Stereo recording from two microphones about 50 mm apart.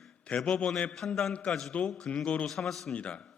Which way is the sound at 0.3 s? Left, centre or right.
Left.